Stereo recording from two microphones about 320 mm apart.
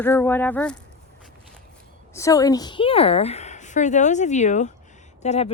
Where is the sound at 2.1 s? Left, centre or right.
Centre.